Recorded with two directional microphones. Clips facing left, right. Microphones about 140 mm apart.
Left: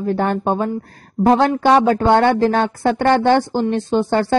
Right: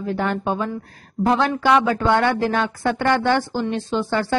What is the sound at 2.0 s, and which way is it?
Speech, 25° left (ahead or behind).